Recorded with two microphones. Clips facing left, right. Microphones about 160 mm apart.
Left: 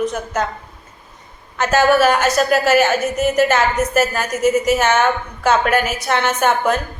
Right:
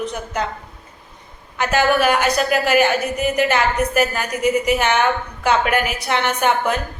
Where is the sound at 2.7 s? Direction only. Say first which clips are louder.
Even; 45° left (ahead or behind).